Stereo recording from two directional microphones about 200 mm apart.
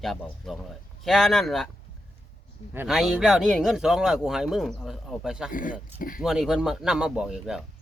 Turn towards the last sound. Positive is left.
turn(degrees=-5)  # may be behind; listen again after turning